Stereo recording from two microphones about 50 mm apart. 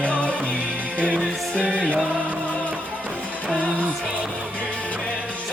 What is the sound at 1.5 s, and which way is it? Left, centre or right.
Speech, centre.